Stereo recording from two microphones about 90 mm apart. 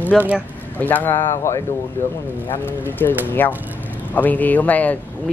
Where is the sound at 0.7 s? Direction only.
20° left (ahead or behind).